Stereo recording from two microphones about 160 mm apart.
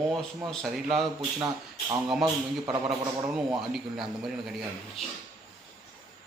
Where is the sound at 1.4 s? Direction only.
25° right (ahead or behind).